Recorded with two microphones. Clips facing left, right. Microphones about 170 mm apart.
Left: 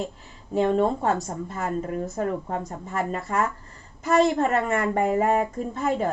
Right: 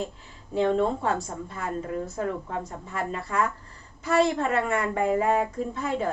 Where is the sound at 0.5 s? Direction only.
45° left (ahead or behind).